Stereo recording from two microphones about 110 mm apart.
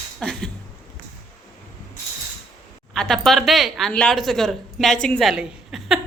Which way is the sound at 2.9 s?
5° left (ahead or behind).